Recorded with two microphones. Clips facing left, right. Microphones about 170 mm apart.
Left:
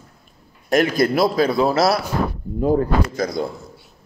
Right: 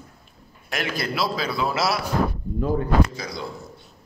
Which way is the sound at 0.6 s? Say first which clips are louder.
Left 11 dB; 45° left (ahead or behind).